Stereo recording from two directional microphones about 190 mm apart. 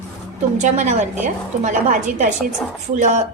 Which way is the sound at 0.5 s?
40° right (ahead or behind).